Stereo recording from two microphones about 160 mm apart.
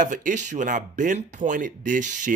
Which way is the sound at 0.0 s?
55° right (ahead or behind).